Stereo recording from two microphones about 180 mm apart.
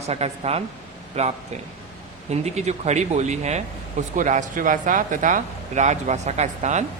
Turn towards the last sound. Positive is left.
turn(degrees=-40)  # may be behind; listen again after turning